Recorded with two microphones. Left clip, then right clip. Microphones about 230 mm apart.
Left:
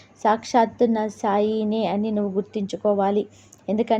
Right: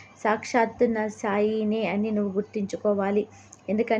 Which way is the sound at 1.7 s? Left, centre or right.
Centre.